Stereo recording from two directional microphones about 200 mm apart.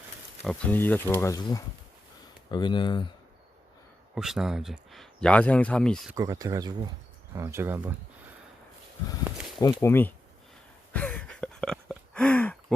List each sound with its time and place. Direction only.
0.4 s speech: 5° left (ahead or behind); by 3.1 s 25° left (ahead or behind)
4.1 s speech: 5° right (ahead or behind)
6.1 s speech: 15° right (ahead or behind)
9.8 s speech: 10° left (ahead or behind)
10.9 s a sound: 10° left (ahead or behind)